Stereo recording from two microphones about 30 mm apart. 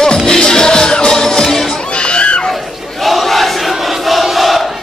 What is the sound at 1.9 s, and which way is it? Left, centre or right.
Crowd, left.